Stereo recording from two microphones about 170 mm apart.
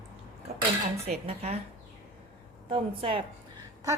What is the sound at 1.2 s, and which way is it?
Speech, 35° right (ahead or behind).